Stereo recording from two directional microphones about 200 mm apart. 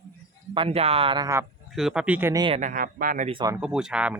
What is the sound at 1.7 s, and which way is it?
Speech, centre (ahead or behind).